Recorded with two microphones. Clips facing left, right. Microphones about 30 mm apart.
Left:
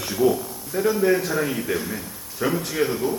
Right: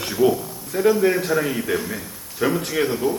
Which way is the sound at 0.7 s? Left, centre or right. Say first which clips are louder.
Right 4 dB; right.